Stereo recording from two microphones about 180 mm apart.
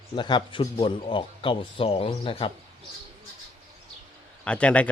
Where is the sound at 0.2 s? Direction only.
25° left (ahead or behind).